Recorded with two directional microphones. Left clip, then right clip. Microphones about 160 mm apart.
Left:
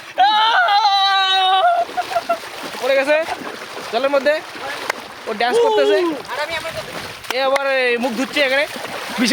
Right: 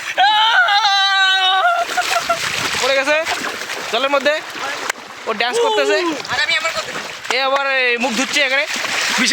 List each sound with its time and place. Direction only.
0.2 s a sound: centre (ahead or behind)
2.8 s boat: 30° right (ahead or behind)
3.9 s speech: 30° right (ahead or behind)
7.3 s speech: 25° right (ahead or behind)